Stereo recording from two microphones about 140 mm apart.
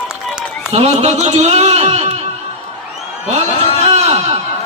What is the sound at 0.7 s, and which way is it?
A man's voice, 50° right (ahead or behind).